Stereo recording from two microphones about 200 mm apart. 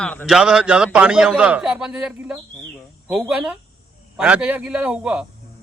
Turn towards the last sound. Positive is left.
turn(degrees=-5)  # may be behind; listen again after turning